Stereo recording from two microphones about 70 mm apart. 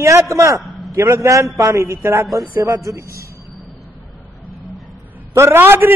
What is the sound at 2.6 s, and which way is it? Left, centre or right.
Speech, right.